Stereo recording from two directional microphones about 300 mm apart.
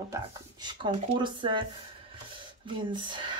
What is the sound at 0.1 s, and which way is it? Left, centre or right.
Speech, centre.